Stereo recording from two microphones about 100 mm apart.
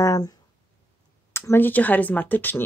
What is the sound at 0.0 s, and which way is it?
Speech, 35° left (ahead or behind).